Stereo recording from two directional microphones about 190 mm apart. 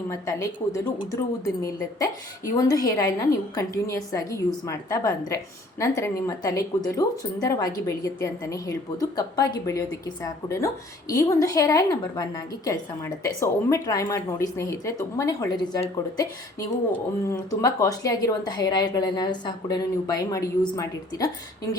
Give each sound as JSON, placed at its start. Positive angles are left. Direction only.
{"t": 0.1, "sound": "a woman's voice", "side_deg": 15}